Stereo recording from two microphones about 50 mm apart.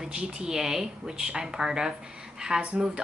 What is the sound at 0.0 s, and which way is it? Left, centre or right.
A woman's voice, centre.